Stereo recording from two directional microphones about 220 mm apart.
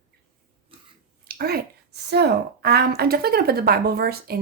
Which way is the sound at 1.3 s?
45° right (ahead or behind).